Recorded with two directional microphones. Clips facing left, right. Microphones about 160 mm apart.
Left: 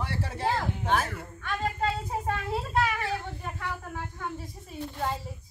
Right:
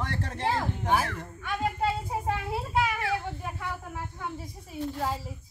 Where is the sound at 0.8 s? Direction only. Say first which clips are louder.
Right 2 dB; 10° right (ahead or behind).